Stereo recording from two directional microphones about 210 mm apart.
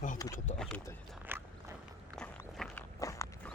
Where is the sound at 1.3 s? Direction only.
10° right (ahead or behind).